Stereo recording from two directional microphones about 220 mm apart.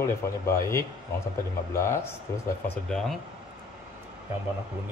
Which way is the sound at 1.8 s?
10° left (ahead or behind).